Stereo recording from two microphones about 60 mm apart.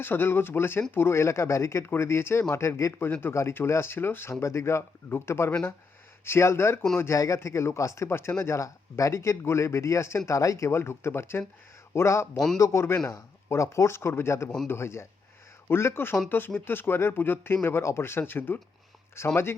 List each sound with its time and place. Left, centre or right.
0.0 s speech: left
3.0 s speech: left
7.2 s speech: left
12.5 s speech: left
13.1 s speech: left
19.2 s speech: left